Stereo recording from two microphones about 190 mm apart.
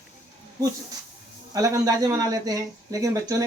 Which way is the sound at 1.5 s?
15° right (ahead or behind).